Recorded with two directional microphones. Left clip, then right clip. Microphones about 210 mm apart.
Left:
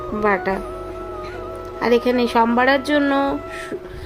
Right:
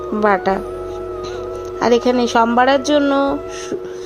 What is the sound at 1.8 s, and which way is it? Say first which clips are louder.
Speech: right 3 dB; 15° right (ahead or behind).